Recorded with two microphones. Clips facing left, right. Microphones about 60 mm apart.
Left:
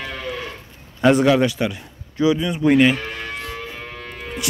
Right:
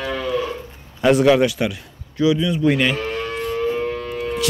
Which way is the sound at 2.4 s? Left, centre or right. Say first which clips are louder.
Right 2 dB; left.